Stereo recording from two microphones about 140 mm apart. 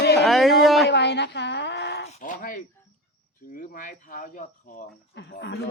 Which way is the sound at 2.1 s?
70° left (ahead or behind).